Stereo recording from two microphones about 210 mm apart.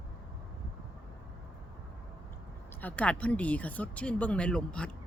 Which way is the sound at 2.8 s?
5° left (ahead or behind).